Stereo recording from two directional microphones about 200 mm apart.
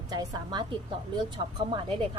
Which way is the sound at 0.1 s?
20° right (ahead or behind).